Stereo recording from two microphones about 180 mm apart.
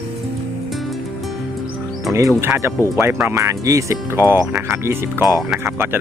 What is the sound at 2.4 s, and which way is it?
Speech, 15° right (ahead or behind).